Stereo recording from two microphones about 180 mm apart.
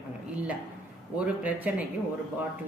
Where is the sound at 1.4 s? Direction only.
10° right (ahead or behind).